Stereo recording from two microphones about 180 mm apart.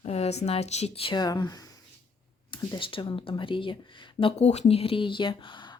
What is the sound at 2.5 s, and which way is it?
Speech, 25° left (ahead or behind).